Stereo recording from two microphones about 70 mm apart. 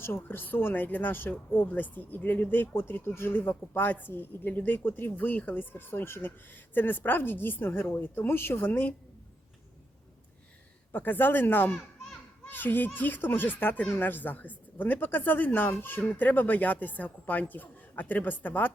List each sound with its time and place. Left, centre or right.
0.0 s speech: left
10.9 s speech: left